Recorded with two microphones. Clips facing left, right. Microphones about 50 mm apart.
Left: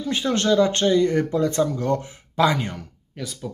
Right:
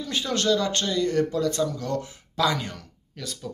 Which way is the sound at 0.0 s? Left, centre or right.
Left.